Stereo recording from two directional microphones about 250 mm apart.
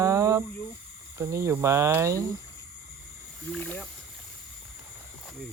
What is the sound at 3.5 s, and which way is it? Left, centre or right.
Speech, centre.